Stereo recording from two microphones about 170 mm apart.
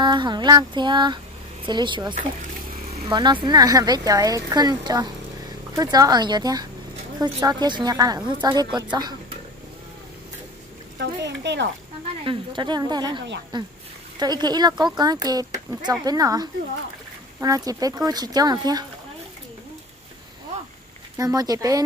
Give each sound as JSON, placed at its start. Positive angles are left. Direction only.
{"t": 0.0, "sound": "speech", "side_deg": -25}
{"t": 2.9, "sound": "vehicle", "side_deg": -40}
{"t": 3.2, "sound": "speech", "side_deg": -25}
{"t": 11.0, "sound": "speech", "side_deg": -90}
{"t": 12.3, "sound": "speech", "side_deg": -25}
{"t": 21.2, "sound": "speech", "side_deg": -20}